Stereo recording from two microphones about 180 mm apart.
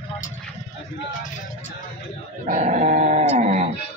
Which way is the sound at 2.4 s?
40° right (ahead or behind).